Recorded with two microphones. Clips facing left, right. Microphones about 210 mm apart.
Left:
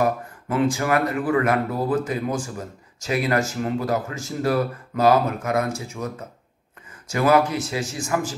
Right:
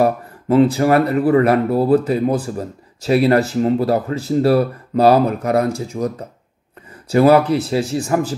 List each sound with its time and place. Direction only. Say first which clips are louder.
0.0 s speech: right 6 dB; 30° right (ahead or behind)